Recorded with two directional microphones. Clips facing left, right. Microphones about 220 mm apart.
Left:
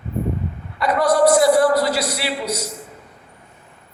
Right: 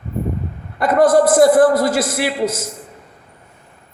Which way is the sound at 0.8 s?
50° right (ahead or behind).